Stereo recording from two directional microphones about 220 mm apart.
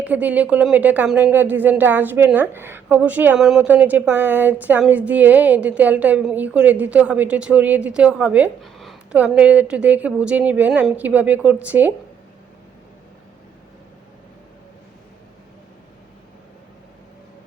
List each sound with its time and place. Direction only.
0.0 s speech: 5° right (ahead or behind)